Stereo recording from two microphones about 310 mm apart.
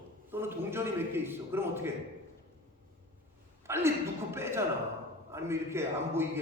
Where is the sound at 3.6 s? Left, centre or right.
Centre.